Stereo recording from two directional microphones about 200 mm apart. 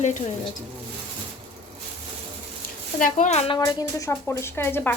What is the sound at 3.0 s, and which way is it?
Speech, 35° left (ahead or behind).